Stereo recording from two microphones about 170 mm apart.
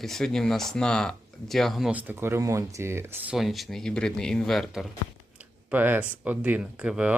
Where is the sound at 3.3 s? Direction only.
Centre (ahead or behind).